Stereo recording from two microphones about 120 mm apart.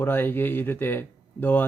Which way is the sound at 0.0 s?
15° left (ahead or behind).